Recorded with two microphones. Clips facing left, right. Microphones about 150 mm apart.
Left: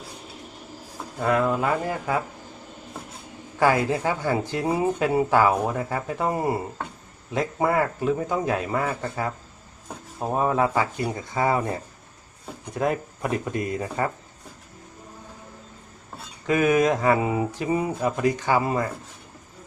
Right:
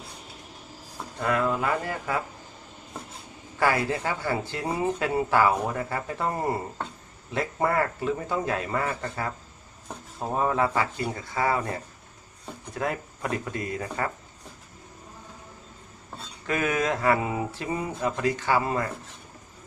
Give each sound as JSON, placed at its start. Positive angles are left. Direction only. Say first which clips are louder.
{"t": 1.2, "sound": "speech", "louder": "left 3 dB", "side_deg": 20}
{"t": 3.6, "sound": "speech", "louder": "left 4 dB", "side_deg": 15}
{"t": 10.2, "sound": "speech", "louder": "left 3 dB", "side_deg": 15}
{"t": 16.5, "sound": "speech", "louder": "left 6 dB", "side_deg": 15}